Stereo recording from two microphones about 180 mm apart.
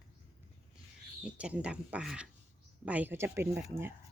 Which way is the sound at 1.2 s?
5° right (ahead or behind).